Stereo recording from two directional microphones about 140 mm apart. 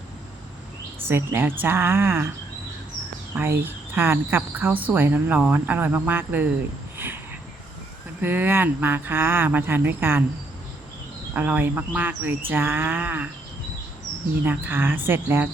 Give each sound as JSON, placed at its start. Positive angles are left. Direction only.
{"t": 1.0, "sound": "speech", "side_deg": -15}
{"t": 3.3, "sound": "speech", "side_deg": -15}
{"t": 8.2, "sound": "speech", "side_deg": -15}
{"t": 11.3, "sound": "speech", "side_deg": -10}
{"t": 14.4, "sound": "speech", "side_deg": -15}